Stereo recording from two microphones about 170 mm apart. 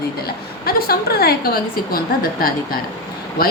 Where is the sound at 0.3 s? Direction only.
60° left (ahead or behind).